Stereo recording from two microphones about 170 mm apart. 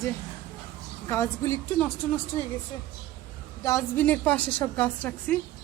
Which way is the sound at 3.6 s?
15° left (ahead or behind).